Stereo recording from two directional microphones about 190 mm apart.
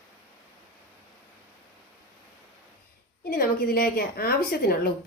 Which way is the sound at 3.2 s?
55° left (ahead or behind).